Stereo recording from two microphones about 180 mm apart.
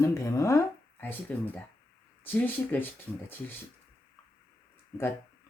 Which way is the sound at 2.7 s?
10° left (ahead or behind).